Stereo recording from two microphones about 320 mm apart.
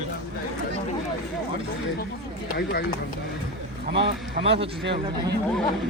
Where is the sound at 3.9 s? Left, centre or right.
Right.